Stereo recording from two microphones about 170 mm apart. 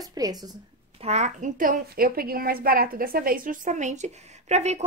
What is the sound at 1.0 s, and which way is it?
A woman's voice, 40° right (ahead or behind).